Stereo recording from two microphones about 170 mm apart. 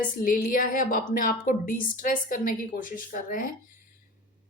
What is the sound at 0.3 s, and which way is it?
Speech, 55° left (ahead or behind).